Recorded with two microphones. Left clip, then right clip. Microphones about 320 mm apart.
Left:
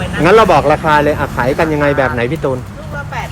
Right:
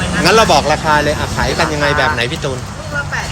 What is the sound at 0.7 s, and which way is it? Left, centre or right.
Speech, left.